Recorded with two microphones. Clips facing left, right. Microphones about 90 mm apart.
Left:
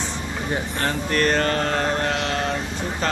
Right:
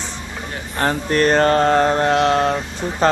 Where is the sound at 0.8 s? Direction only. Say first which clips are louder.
Right 6 dB; 30° right (ahead or behind).